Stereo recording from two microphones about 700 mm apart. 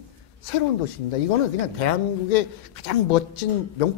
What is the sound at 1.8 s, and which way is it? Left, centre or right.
Speech, left.